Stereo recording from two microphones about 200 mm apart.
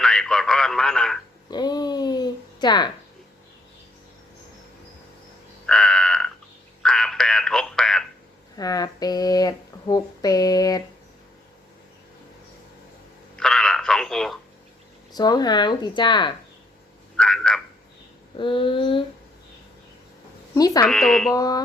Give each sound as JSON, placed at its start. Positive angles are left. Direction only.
{"t": 0.0, "sound": "a man's voice", "side_deg": 5}
{"t": 1.5, "sound": "a sound", "side_deg": 20}
{"t": 5.6, "sound": "crow", "side_deg": 5}
{"t": 6.8, "sound": "a sound", "side_deg": 0}
{"t": 8.5, "sound": "speech", "side_deg": 20}
{"t": 13.3, "sound": "telephone", "side_deg": 5}
{"t": 15.1, "sound": "speech", "side_deg": 20}
{"t": 17.2, "sound": "speech", "side_deg": 5}
{"t": 18.3, "sound": "speech", "side_deg": 25}
{"t": 20.6, "sound": "speech", "side_deg": 15}
{"t": 20.8, "sound": "speech", "side_deg": 0}
{"t": 21.3, "sound": "speech", "side_deg": 20}